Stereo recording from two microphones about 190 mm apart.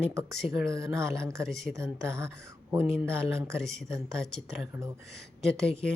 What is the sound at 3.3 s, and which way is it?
Speech, 15° right (ahead or behind).